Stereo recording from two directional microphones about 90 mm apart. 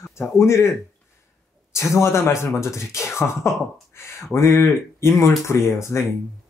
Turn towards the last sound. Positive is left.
turn(degrees=30)  # may be behind; listen again after turning